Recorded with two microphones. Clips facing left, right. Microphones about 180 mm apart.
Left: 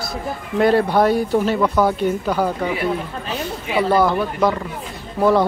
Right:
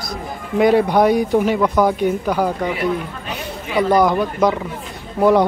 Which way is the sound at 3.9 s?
15° right (ahead or behind).